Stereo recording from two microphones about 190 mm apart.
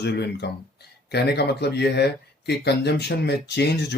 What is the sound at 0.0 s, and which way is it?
Speech, 60° left (ahead or behind).